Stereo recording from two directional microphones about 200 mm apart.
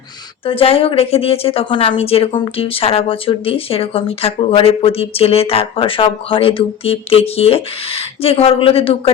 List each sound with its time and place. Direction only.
0.4 s a woman's voice: 30° left (ahead or behind)